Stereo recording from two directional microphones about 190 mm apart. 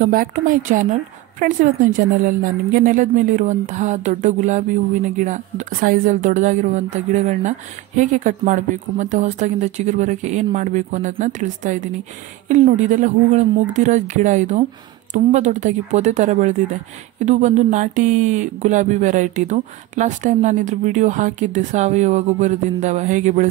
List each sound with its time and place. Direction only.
0.0 s a woman's voice: 45° right (ahead or behind)